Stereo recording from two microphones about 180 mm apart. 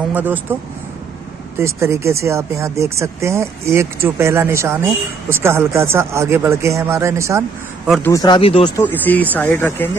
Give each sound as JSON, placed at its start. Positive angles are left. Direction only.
{"t": 0.1, "sound": "speech", "side_deg": -10}
{"t": 1.6, "sound": "speech", "side_deg": -15}
{"t": 8.0, "sound": "speech", "side_deg": 20}
{"t": 8.7, "sound": "speech", "side_deg": 10}